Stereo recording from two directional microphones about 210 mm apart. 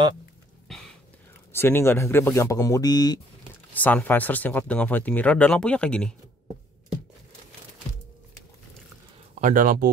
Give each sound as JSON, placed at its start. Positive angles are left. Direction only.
{"t": 0.7, "sound": "a sound", "side_deg": 0}
{"t": 1.5, "sound": "speech", "side_deg": 10}
{"t": 3.7, "sound": "speech", "side_deg": 5}
{"t": 9.4, "sound": "speech", "side_deg": -40}